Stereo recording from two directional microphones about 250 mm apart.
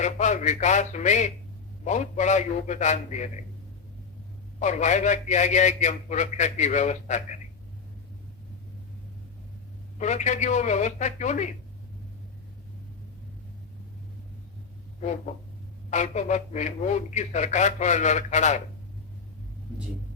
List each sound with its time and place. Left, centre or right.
0.0 s a man's voice: left
4.6 s a man's voice: left
10.0 s a man's voice: left
15.9 s a man's voice: left